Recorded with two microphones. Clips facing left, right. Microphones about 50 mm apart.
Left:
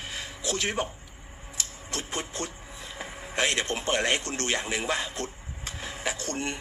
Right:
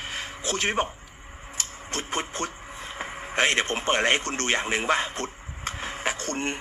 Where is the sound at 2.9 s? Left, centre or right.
Right.